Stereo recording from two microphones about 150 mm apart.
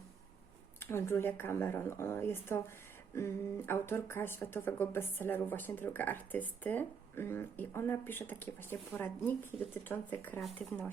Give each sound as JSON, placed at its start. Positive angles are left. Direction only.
{"t": 0.8, "sound": "speech", "side_deg": 15}